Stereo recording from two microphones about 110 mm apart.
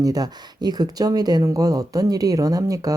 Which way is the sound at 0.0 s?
35° right (ahead or behind).